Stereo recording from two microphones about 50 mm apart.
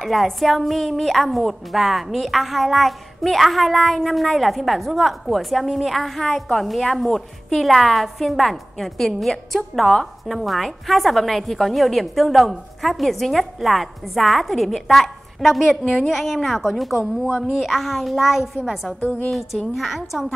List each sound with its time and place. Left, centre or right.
0.0 s a woman's voice: centre
18.9 s a woman's voice: left
19.7 s a woman's voice: centre